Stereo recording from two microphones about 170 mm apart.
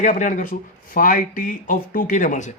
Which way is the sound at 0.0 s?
45° left (ahead or behind).